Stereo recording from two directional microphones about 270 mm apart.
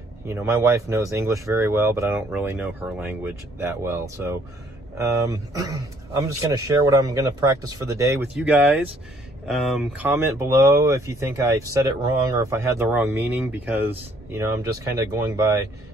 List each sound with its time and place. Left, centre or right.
0.3 s speech: centre